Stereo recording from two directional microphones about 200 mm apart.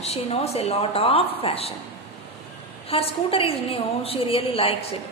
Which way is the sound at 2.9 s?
25° left (ahead or behind).